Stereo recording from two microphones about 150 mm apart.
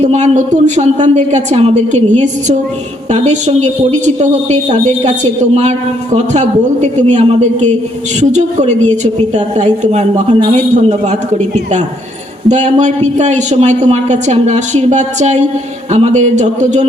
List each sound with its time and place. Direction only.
0.0 s a man's voice: 50° right (ahead or behind)
12.5 s a man's voice: 50° right (ahead or behind)